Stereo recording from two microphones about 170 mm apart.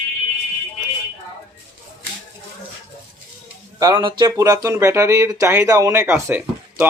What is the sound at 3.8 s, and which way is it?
Speech, 25° right (ahead or behind).